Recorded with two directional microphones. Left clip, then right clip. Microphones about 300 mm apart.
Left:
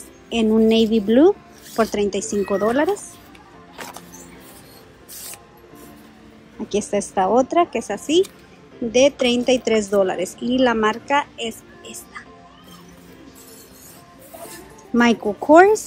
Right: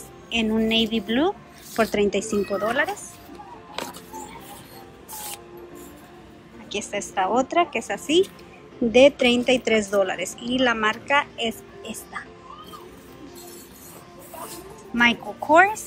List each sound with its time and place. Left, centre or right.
0.3 s a woman's voice: centre
6.7 s a woman's voice: centre
15.0 s a woman's voice: centre